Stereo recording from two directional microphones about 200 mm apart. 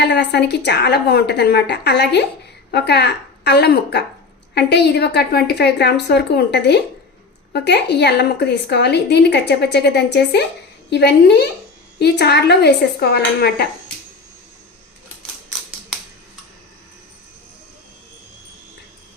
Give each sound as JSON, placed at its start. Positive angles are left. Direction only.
{"t": 0.0, "sound": "a woman's voice", "side_deg": 60}